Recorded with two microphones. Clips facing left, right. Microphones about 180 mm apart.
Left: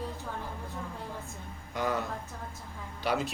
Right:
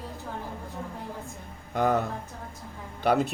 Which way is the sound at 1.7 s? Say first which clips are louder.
Right 7 dB; 55° right (ahead or behind).